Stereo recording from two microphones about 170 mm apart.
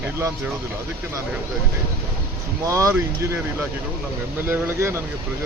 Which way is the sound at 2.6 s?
15° right (ahead or behind).